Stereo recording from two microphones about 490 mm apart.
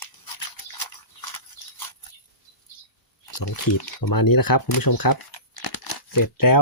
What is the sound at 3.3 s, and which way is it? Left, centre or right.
Speech, left.